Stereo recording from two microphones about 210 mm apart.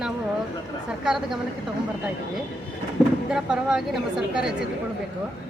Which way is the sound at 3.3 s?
5° right (ahead or behind).